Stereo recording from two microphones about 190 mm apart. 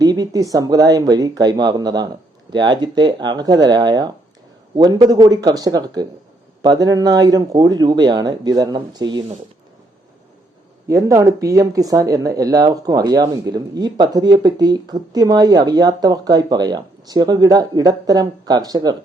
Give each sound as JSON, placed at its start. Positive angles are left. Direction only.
{"t": 0.0, "sound": "speech", "side_deg": -20}
{"t": 10.8, "sound": "speech", "side_deg": -15}